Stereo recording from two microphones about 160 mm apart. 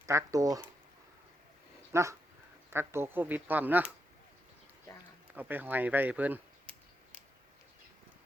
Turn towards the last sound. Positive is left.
turn(degrees=-10)  # may be behind; listen again after turning